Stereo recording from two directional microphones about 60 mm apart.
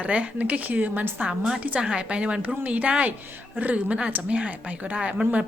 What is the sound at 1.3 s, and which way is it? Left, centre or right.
A woman's voice, centre.